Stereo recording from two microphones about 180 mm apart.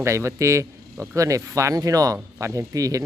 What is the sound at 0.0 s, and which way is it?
Speech, 15° right (ahead or behind).